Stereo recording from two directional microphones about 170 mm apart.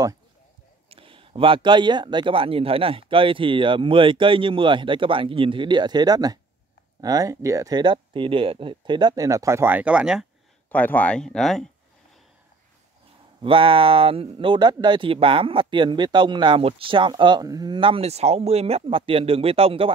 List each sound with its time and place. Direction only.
0.8 s speech: 30° right (ahead or behind); by 10.2 s 5° right (ahead or behind)
10.7 s speech: 10° left (ahead or behind)
13.4 s speech: 30° right (ahead or behind)